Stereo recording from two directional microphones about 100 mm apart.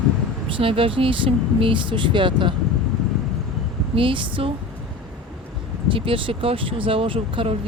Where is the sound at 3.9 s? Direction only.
60° right (ahead or behind).